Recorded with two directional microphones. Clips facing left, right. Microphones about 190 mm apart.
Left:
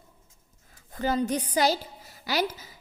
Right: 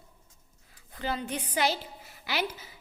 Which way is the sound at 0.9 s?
45° left (ahead or behind).